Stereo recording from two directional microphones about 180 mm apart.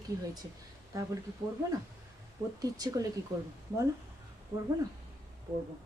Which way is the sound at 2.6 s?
20° right (ahead or behind).